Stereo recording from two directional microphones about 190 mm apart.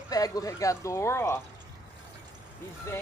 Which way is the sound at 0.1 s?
20° left (ahead or behind).